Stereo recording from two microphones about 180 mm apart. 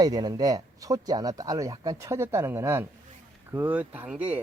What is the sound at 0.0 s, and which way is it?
Speech, 20° right (ahead or behind).